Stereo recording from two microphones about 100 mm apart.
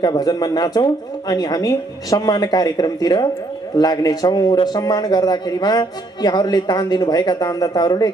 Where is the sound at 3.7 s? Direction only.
40° left (ahead or behind).